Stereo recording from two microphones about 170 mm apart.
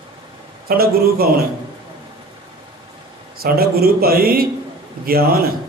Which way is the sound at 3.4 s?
65° right (ahead or behind).